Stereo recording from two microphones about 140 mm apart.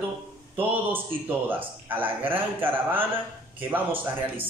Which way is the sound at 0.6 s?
15° right (ahead or behind).